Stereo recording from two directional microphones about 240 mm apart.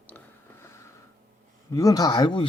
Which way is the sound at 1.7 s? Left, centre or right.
Centre.